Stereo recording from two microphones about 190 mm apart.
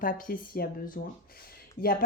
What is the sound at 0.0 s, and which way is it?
Speech, 45° left (ahead or behind).